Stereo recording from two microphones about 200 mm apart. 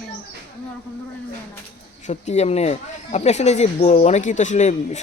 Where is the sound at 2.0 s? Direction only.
35° left (ahead or behind).